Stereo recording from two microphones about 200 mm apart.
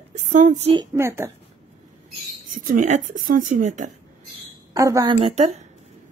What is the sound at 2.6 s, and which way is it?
A woman's voice, 40° right (ahead or behind).